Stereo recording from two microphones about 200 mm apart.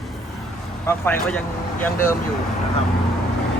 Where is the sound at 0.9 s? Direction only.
10° left (ahead or behind).